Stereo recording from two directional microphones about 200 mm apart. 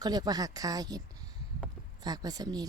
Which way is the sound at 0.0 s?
20° right (ahead or behind).